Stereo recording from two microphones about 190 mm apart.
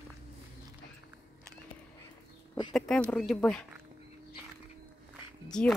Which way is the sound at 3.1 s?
5° left (ahead or behind).